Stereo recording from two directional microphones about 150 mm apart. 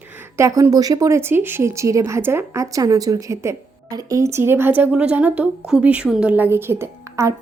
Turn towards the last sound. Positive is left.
turn(degrees=-15)  # may be behind; listen again after turning